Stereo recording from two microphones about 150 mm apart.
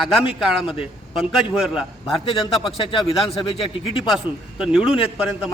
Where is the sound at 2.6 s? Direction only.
35° left (ahead or behind).